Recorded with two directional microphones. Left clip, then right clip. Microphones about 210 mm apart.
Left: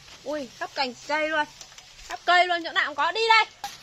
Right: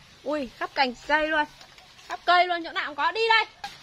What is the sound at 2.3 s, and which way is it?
A woman's voice, 5° left (ahead or behind).